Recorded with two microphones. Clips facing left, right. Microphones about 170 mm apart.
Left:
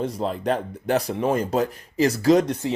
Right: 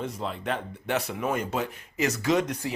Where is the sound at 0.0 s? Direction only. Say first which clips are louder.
Left 7 dB; 35° left (ahead or behind).